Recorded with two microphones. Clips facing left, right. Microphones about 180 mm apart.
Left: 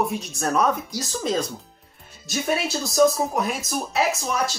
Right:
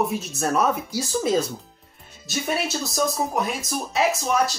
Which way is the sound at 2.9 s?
Centre (ahead or behind).